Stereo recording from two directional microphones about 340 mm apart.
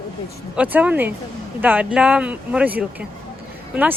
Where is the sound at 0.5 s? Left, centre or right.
Centre.